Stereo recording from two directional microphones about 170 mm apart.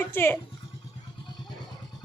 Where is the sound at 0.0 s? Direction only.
15° left (ahead or behind).